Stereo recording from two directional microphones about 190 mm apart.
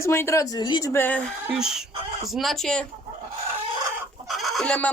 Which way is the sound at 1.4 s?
5° right (ahead or behind).